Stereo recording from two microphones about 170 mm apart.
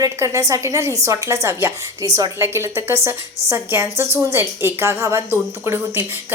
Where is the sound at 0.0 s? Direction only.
20° right (ahead or behind).